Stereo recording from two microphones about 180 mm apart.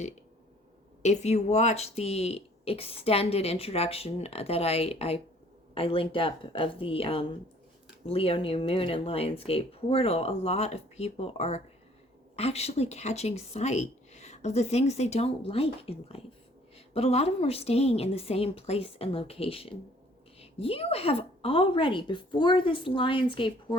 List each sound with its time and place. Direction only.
1.0 s a woman's voice: 40° left (ahead or behind)